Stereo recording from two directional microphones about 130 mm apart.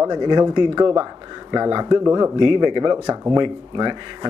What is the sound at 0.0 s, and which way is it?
Speech, 35° right (ahead or behind).